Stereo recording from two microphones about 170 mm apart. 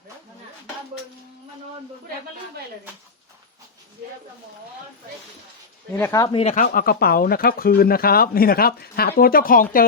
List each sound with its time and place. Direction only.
6.0 s speech: 20° left (ahead or behind)
6.3 s speech: 40° left (ahead or behind)